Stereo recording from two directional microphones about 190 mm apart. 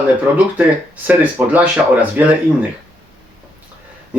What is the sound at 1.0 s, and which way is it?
Speech, 10° right (ahead or behind).